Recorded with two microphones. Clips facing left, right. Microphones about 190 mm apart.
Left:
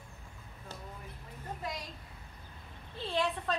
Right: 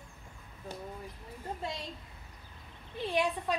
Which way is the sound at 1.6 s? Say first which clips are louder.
Even; 25° right (ahead or behind).